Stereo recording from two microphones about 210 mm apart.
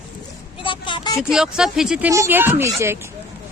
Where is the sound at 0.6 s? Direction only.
20° left (ahead or behind).